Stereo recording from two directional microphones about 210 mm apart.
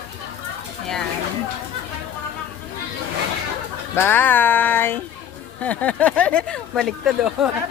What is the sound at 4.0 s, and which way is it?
Speech, 10° left (ahead or behind).